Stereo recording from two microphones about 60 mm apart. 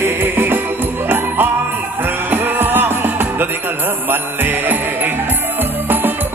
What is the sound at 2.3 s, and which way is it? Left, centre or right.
Music, right.